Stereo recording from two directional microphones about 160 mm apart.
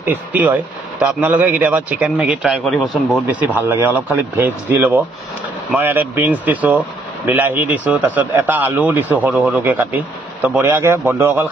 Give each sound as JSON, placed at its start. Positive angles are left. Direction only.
{"t": 0.0, "sound": "speech", "side_deg": -10}